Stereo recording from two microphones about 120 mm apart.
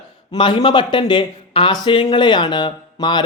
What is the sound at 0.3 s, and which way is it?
Speech, 40° left (ahead or behind).